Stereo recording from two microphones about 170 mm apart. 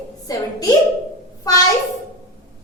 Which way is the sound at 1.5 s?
20° left (ahead or behind).